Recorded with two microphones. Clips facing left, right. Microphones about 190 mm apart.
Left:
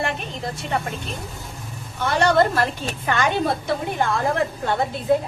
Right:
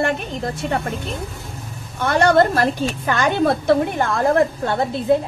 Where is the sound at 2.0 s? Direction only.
50° right (ahead or behind).